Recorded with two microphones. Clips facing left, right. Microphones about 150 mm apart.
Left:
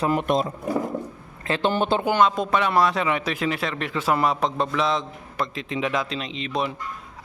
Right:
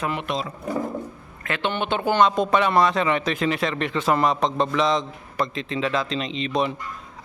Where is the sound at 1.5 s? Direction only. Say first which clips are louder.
Left 3 dB; 35° left (ahead or behind).